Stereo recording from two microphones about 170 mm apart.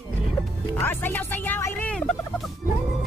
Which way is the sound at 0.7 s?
15° left (ahead or behind).